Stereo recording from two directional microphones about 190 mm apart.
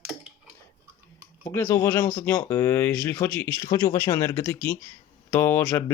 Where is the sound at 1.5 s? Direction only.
15° left (ahead or behind).